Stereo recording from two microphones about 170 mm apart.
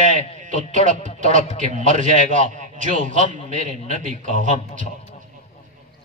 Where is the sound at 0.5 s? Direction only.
45° right (ahead or behind).